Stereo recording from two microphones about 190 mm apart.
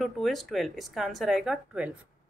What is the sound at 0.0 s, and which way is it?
Speech, centre (ahead or behind).